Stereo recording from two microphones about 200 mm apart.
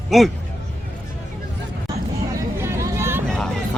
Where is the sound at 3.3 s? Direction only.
5° left (ahead or behind).